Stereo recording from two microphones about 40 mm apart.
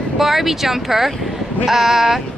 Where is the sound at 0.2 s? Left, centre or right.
Centre.